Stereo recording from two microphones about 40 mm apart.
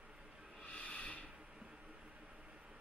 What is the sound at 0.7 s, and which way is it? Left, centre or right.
Snort, left.